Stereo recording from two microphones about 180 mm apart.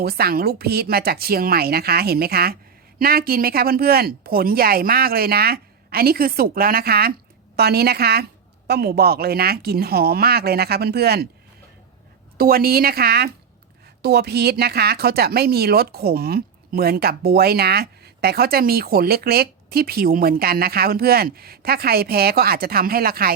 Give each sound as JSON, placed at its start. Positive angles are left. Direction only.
{"t": 0.0, "sound": "speech", "side_deg": -60}
{"t": 12.4, "sound": "speech", "side_deg": -55}